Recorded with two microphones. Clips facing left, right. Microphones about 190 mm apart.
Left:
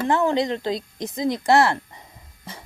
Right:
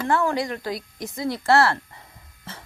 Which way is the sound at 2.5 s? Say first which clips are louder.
Left 1 dB; 15° left (ahead or behind).